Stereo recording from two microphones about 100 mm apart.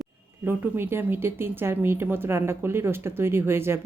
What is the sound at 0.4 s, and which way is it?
Speech, 25° right (ahead or behind).